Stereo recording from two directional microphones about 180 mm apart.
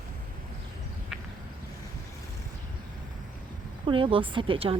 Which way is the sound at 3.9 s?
30° right (ahead or behind).